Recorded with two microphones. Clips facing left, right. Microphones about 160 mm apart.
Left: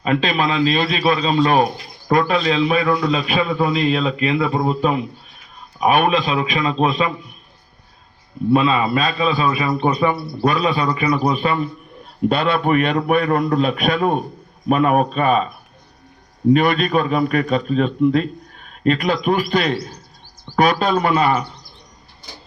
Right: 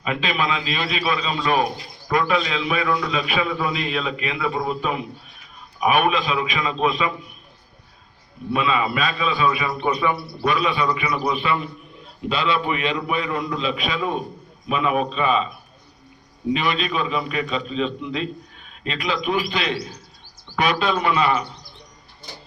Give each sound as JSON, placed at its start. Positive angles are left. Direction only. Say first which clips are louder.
{"t": 0.0, "sound": "a man's voice", "louder": "left 5 dB", "side_deg": 40}
{"t": 8.5, "sound": "a man's voice", "louder": "left 5 dB", "side_deg": 35}
{"t": 12.3, "sound": "a man's voice", "louder": "left 4 dB", "side_deg": 55}
{"t": 16.5, "sound": "a man's voice", "louder": "left 8 dB", "side_deg": 50}